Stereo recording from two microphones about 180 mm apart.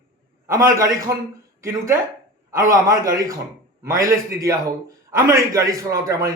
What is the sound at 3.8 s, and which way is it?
A man's voice, 15° right (ahead or behind).